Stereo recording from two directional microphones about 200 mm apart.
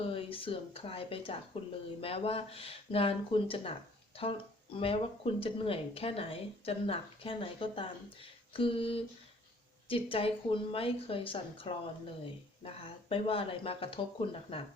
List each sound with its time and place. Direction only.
0.0 s speech: 25° left (ahead or behind)